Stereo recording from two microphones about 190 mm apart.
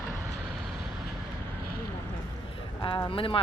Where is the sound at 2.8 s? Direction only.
25° left (ahead or behind).